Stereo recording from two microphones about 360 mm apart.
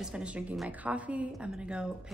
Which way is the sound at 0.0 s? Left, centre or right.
Centre.